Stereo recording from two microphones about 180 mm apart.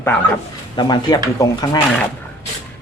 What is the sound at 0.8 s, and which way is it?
Speech, 20° left (ahead or behind).